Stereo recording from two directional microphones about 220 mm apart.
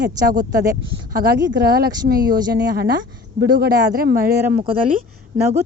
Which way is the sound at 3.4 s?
45° right (ahead or behind).